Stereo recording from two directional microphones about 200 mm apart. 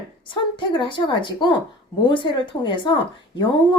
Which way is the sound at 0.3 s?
25° left (ahead or behind).